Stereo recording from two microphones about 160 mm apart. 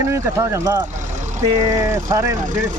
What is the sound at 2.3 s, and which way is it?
Speech, 55° right (ahead or behind).